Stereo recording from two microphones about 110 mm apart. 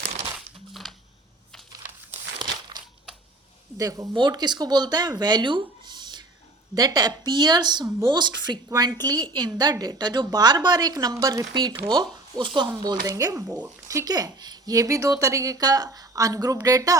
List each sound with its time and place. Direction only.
0.3 s crumpling: centre (ahead or behind)
2.4 s crumpling: 45° right (ahead or behind)
3.8 s a woman's voice: 30° right (ahead or behind)
4.1 s a woman's voice: 40° right (ahead or behind)